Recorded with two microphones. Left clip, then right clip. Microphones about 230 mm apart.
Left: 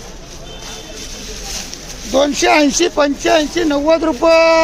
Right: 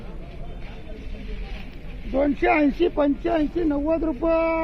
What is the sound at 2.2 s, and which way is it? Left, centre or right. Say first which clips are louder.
Speech: left 8 dB; left.